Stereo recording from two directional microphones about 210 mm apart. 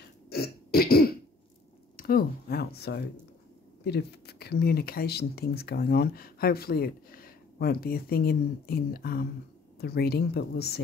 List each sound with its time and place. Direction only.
0.3 s burping: 45° left (ahead or behind)
2.0 s speech: 45° left (ahead or behind)